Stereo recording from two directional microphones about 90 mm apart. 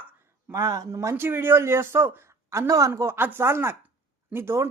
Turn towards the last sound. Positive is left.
turn(degrees=-30)  # may be behind; listen again after turning